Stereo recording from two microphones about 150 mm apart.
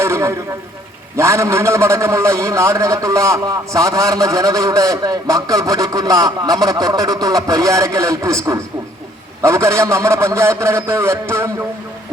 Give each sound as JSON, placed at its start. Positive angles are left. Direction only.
{"t": 0.0, "sound": "a man's voice", "side_deg": -15}